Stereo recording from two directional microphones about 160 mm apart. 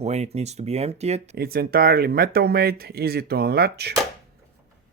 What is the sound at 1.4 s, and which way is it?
Speech, 70° right (ahead or behind).